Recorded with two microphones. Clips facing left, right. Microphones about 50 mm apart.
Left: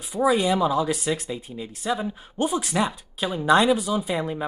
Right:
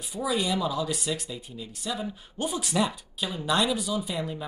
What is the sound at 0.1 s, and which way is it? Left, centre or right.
Speech, left.